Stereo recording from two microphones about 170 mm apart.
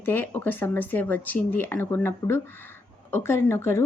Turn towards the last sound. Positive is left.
turn(degrees=15)  # may be behind; listen again after turning